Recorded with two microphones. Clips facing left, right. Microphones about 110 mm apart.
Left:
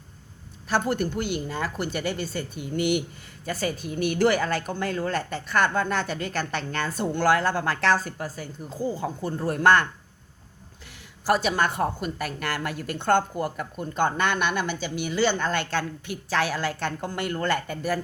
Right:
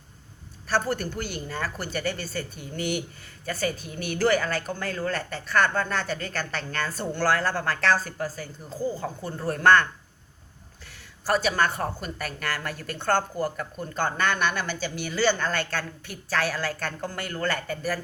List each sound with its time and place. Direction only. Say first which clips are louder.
0.7 s a woman's voice: left 2 dB; 15° left (ahead or behind)
2.7 s speech: left 5 dB; 40° right (ahead or behind)
3.4 s a woman's voice: left 1 dB; 25° left (ahead or behind)
11.3 s a woman's voice: left 1 dB; 20° left (ahead or behind)